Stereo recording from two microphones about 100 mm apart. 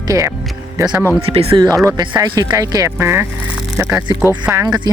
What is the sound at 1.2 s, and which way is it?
Speech, 70° right (ahead or behind).